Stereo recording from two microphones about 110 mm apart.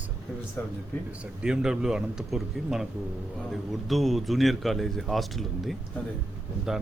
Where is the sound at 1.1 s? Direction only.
10° right (ahead or behind).